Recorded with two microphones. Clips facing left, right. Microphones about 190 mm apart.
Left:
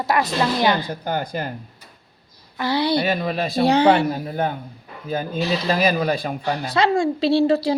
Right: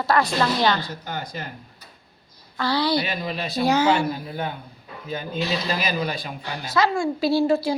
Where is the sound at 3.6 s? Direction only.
30° left (ahead or behind).